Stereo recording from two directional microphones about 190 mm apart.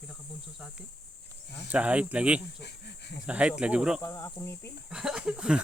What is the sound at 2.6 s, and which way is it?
Speech, 60° left (ahead or behind).